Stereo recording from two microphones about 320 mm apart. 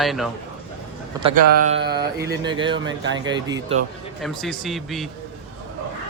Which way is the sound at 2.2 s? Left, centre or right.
Centre.